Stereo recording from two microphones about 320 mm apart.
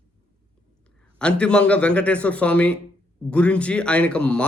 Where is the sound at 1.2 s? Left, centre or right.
Centre.